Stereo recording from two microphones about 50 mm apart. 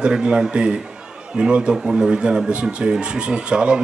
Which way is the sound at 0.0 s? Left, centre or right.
Centre.